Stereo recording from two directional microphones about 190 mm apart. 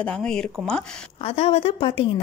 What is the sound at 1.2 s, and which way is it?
Speech, 30° left (ahead or behind).